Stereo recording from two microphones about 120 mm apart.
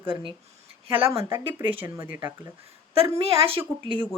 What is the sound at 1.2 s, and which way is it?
Speech, 20° right (ahead or behind).